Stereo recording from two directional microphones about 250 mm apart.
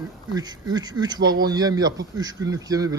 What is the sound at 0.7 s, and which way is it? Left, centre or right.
A man's voice, centre.